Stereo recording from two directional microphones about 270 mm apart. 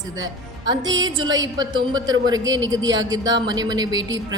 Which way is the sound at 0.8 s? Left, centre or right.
Right.